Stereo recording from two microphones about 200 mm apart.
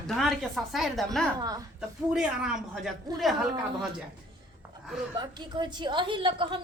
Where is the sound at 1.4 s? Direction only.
20° right (ahead or behind).